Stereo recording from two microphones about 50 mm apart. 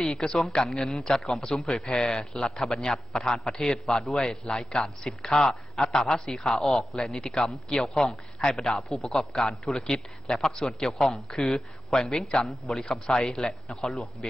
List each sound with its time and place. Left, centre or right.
0.0 s a man's voice: centre
4.0 s a man's voice: centre
10.9 s a man's voice: centre
12.8 s a man's voice: centre